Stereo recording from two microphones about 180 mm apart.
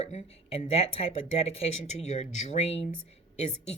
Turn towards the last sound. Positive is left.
turn(degrees=35)  # may be behind; listen again after turning